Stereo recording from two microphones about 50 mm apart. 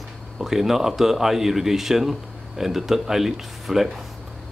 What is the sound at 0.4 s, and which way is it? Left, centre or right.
Speech, centre.